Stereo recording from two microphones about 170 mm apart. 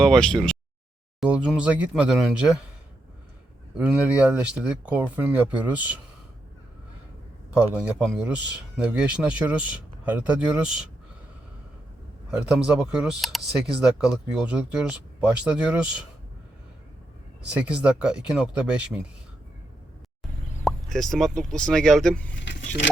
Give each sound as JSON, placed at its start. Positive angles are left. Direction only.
{"t": 0.0, "sound": "speech", "side_deg": 5}
{"t": 3.8, "sound": "speech", "side_deg": -5}
{"t": 7.5, "sound": "speech", "side_deg": -10}
{"t": 12.3, "sound": "speech", "side_deg": -5}
{"t": 17.5, "sound": "speech", "side_deg": -5}
{"t": 20.7, "sound": "speech", "side_deg": 0}
{"t": 22.4, "sound": "vehicle", "side_deg": 90}